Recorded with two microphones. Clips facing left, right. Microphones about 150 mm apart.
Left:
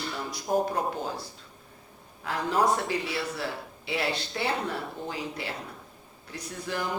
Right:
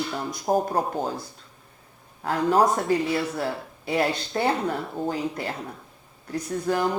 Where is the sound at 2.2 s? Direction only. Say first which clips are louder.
Right 6 dB; 45° right (ahead or behind).